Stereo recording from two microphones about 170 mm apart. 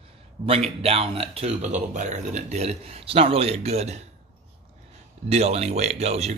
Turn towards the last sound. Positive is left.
turn(degrees=-40)  # may be behind; listen again after turning